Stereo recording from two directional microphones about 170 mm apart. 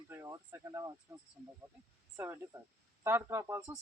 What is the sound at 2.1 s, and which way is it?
Speech, 15° right (ahead or behind).